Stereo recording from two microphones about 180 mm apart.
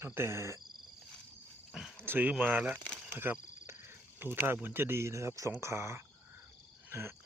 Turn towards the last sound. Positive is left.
turn(degrees=-15)  # may be behind; listen again after turning